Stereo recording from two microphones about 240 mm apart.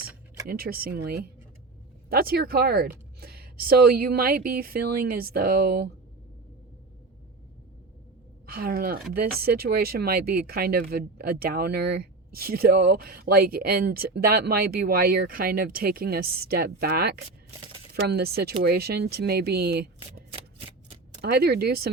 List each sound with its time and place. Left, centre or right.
0.0 s a sound: centre
0.5 s speech: right
8.4 s speech: right
21.2 s speech: right